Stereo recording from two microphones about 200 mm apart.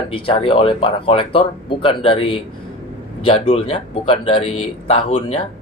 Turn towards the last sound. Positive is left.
turn(degrees=30)  # may be behind; listen again after turning